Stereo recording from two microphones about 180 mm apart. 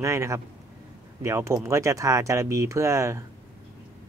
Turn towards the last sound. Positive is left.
turn(degrees=-15)  # may be behind; listen again after turning